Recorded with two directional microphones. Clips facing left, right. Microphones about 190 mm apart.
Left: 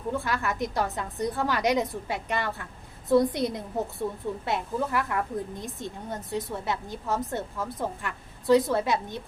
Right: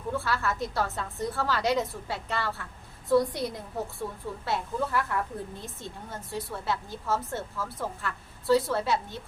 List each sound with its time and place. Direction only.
0.1 s a woman's voice: 15° left (ahead or behind)